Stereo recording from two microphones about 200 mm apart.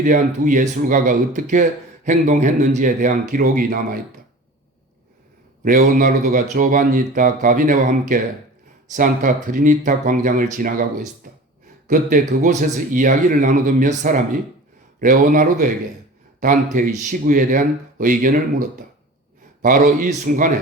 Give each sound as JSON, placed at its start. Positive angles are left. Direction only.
{"t": 0.0, "sound": "speech", "side_deg": -40}
{"t": 5.6, "sound": "speech", "side_deg": -45}
{"t": 11.9, "sound": "speech", "side_deg": -40}